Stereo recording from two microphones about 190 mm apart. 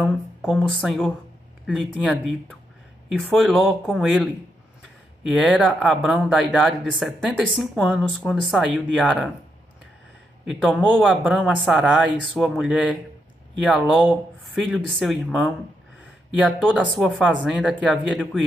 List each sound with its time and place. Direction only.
0.0 s speech: centre (ahead or behind)
3.1 s speech: centre (ahead or behind)
5.5 s speech: centre (ahead or behind)
10.5 s speech: 5° right (ahead or behind)